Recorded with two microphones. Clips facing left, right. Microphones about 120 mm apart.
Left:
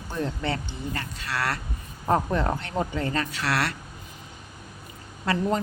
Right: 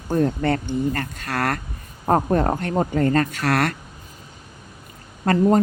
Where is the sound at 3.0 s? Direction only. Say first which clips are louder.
Right 8 dB; 45° right (ahead or behind).